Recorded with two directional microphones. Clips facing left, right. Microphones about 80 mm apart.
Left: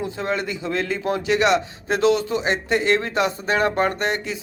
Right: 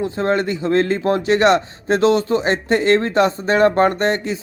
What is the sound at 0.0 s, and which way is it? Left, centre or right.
A man's voice, right.